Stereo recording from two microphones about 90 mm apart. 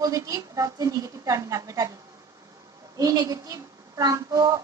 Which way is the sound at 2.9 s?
40° right (ahead or behind).